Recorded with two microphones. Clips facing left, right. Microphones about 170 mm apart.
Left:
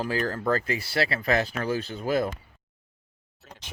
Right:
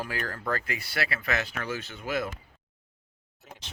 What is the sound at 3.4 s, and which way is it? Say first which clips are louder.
Speech: even; 15° right (ahead or behind).